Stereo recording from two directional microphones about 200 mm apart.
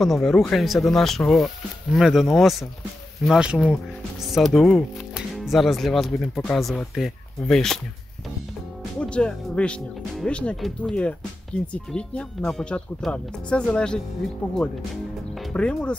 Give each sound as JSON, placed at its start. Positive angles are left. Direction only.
{"t": 0.0, "sound": "speech", "side_deg": 0}
{"t": 9.0, "sound": "speech", "side_deg": 5}
{"t": 15.5, "sound": "speech", "side_deg": 5}